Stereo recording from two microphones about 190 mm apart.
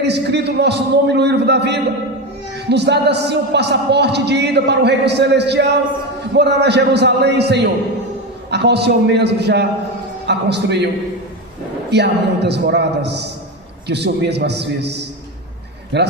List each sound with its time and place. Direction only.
0.0 s speech: 60° right (ahead or behind)
11.9 s speech: 65° right (ahead or behind)